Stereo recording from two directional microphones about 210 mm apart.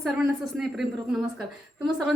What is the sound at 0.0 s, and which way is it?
A woman's voice, centre (ahead or behind).